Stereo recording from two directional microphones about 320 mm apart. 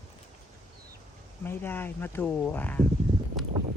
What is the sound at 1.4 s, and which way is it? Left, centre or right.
Speech, centre.